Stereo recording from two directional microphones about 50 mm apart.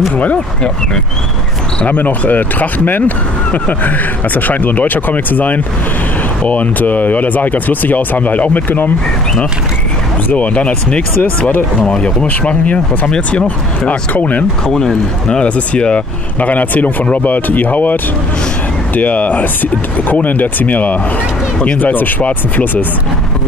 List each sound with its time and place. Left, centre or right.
1.8 s speech: left
10.3 s speech: left
14.7 s speech: centre
15.4 s speech: left
18.9 s speech: left
22.2 s speech: left